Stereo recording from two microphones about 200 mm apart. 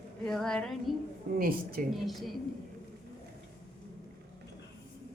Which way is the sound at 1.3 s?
45° right (ahead or behind).